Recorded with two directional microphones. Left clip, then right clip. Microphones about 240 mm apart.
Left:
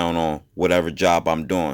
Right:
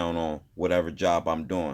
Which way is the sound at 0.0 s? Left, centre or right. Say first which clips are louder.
Left 7 dB; left.